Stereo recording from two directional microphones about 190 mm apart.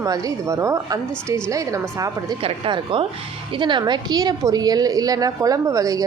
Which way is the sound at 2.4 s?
30° right (ahead or behind).